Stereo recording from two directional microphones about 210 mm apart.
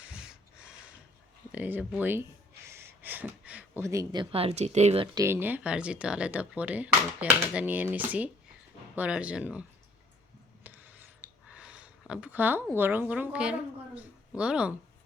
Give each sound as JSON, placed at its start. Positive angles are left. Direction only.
{"t": 1.5, "sound": "speech", "side_deg": -5}
{"t": 5.1, "sound": "speech", "side_deg": -10}
{"t": 10.6, "sound": "a sound", "side_deg": -10}
{"t": 12.7, "sound": "speech", "side_deg": -10}